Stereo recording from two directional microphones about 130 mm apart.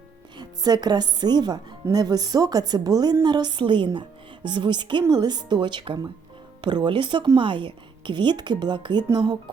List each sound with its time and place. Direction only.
0.3 s speech: 30° right (ahead or behind)